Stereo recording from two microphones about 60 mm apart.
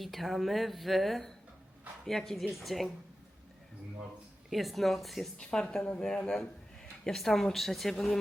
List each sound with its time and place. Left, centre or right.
0.0 s a woman's voice: centre
4.4 s a woman's voice: centre
5.4 s a woman's voice: centre